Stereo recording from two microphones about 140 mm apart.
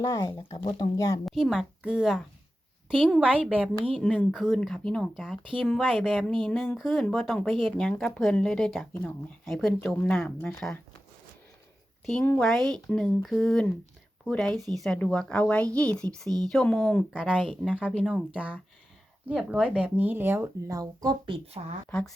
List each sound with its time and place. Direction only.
0.0 s speech: 20° left (ahead or behind)
1.2 s speech: centre (ahead or behind)
12.2 s speech: 15° left (ahead or behind)
12.5 s speech: centre (ahead or behind); by 21.6 s 40° right (ahead or behind)
21.8 s speech: 10° left (ahead or behind)